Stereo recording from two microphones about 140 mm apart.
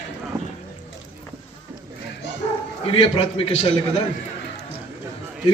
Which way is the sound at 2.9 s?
45° left (ahead or behind).